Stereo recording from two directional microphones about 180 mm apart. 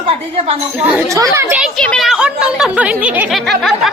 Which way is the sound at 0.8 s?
10° right (ahead or behind).